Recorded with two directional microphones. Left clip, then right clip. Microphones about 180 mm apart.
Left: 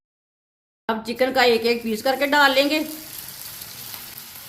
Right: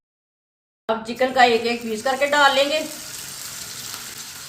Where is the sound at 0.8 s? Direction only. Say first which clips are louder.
Right 1 dB; 60° left (ahead or behind).